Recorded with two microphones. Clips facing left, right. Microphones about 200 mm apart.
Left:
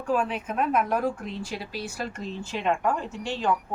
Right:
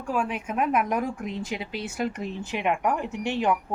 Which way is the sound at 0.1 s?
10° right (ahead or behind).